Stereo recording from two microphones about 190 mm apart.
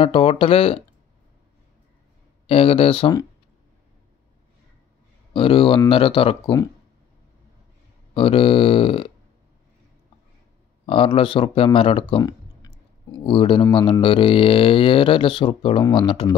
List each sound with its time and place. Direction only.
0.0 s speech: 30° left (ahead or behind)
2.4 s speech: 30° left (ahead or behind)
5.3 s speech: 30° left (ahead or behind)
8.1 s speech: 30° left (ahead or behind)
10.9 s speech: 30° left (ahead or behind)